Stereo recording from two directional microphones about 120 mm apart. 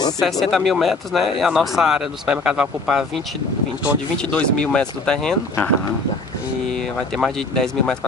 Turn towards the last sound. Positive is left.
turn(degrees=5)  # may be behind; listen again after turning